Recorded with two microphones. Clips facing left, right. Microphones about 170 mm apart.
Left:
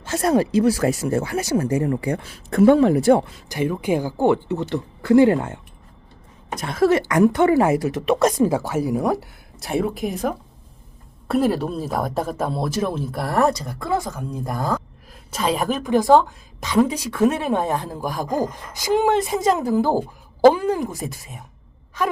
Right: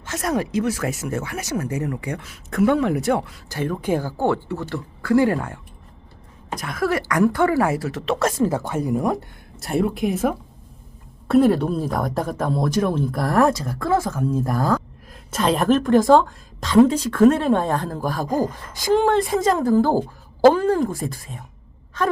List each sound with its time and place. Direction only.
0.0 s speech: 30° left (ahead or behind)
3.5 s speech: 10° left (ahead or behind)
6.6 s a woman's voice: 25° left (ahead or behind)